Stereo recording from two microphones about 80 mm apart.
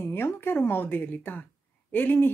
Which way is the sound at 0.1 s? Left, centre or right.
Left.